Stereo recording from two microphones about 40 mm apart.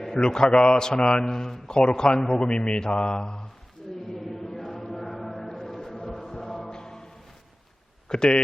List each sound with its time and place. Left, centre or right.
0.0 s a man's voice: centre
4.1 s chant: centre
6.7 s music: centre
8.1 s a man's voice: centre